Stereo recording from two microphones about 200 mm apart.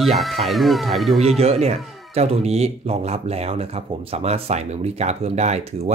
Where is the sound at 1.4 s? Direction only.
30° right (ahead or behind).